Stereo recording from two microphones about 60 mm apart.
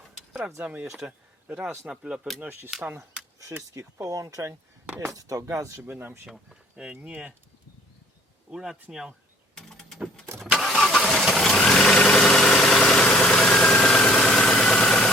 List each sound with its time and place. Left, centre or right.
0.6 s speech: right
1.9 s speech: centre
2.4 s speech: right
3.8 s speech: right
5.9 s speech: right
6.2 s speech: centre
6.7 s speech: centre
8.5 s speech: centre
9.6 s power windows: centre
10.6 s vehicle: centre
14.6 s engine: centre